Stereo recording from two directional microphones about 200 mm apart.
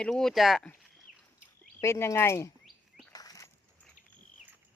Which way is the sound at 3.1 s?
20° left (ahead or behind).